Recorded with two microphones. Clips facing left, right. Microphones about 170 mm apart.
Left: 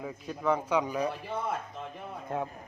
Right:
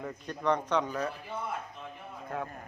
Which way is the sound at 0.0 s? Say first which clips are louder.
Left 1 dB; 5° left (ahead or behind).